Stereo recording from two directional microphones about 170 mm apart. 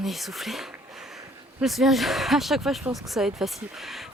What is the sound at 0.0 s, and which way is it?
Speech, centre (ahead or behind).